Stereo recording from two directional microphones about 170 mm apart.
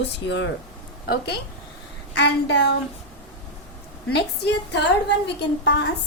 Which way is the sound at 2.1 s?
90° left.